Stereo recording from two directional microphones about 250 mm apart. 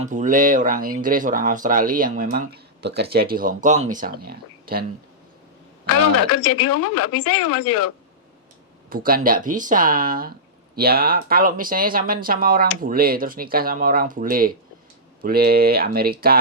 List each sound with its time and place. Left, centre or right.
0.0 s speech: right
6.0 s a woman's voice: left
8.9 s speech: right